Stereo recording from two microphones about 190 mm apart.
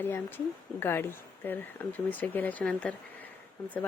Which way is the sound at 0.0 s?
10° left (ahead or behind).